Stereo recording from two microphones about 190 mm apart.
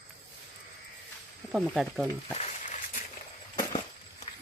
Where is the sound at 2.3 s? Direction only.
40° left (ahead or behind).